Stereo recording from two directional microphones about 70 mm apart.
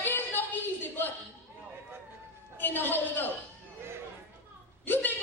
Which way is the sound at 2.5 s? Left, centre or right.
Left.